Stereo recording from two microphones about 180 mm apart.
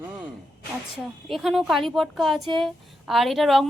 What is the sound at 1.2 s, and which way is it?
Speech, centre (ahead or behind).